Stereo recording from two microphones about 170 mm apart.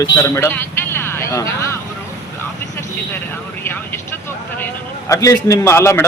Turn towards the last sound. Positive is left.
turn(degrees=15)  # may be behind; listen again after turning